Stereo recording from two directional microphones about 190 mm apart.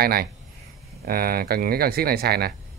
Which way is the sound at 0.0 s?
55° right (ahead or behind).